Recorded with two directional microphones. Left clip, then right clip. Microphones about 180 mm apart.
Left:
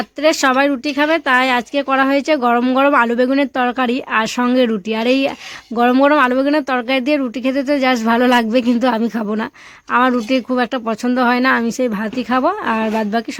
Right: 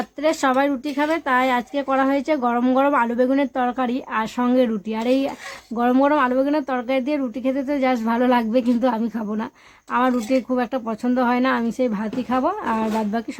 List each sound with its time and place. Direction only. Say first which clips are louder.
0.2 s speech: left 6 dB; 20° left (ahead or behind)